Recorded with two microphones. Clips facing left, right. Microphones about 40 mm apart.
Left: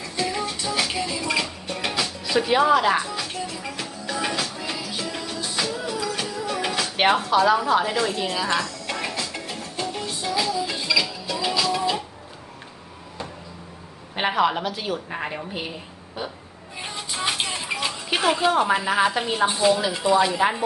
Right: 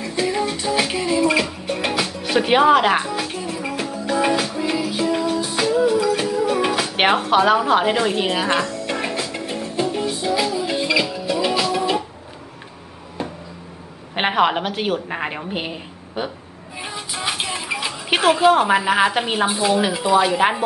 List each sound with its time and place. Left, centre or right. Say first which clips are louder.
0.0 s music: right 5 dB; right
2.2 s music: right 4 dB; right
7.0 s music: right 2 dB; right
13.2 s a sound: right 7 dB; right
14.1 s a woman's voice: right 4 dB; right
15.1 s a woman's voice: right 4 dB; right
16.7 s music: right 2 dB; centre
18.7 s a woman's voice: right 4 dB; right
19.4 s speech: left 2 dB; centre
20.0 s speech: right 4 dB; right